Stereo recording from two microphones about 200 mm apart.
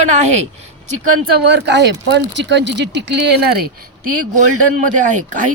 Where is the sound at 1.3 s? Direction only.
55° right (ahead or behind).